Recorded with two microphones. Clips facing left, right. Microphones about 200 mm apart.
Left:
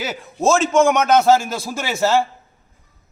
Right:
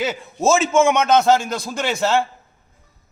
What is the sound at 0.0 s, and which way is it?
A man's voice, centre (ahead or behind).